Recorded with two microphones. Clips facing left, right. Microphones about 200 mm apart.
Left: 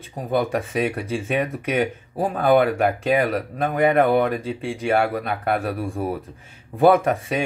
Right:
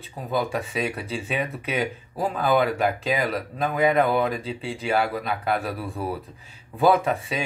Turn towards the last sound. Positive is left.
turn(degrees=50)  # may be behind; listen again after turning